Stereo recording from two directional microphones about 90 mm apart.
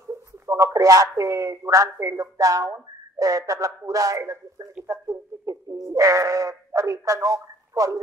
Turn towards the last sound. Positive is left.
turn(degrees=-40)  # may be behind; listen again after turning